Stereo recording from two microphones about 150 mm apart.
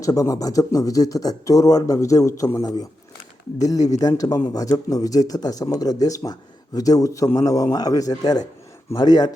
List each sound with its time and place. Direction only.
0.0 s speech: 20° left (ahead or behind)